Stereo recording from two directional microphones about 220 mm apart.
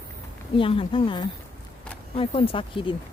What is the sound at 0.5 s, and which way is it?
Speech, 25° left (ahead or behind).